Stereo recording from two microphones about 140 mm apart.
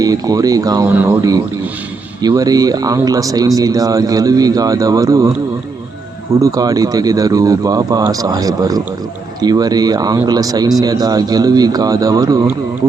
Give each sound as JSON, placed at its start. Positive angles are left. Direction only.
{"t": 0.0, "sound": "speech", "side_deg": -25}
{"t": 6.4, "sound": "speech", "side_deg": -25}